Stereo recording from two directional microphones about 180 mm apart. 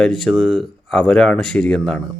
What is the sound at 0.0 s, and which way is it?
Speech, centre (ahead or behind).